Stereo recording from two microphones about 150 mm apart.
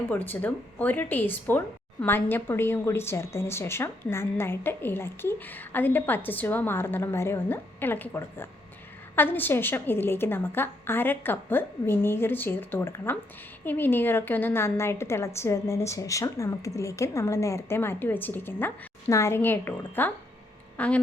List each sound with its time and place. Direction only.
0.1 s speech: 15° left (ahead or behind)